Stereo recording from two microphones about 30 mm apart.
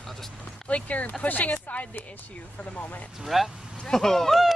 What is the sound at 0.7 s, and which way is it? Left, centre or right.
Speech, left.